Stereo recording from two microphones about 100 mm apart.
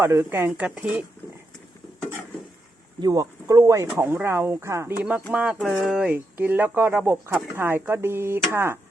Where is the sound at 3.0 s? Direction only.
35° right (ahead or behind).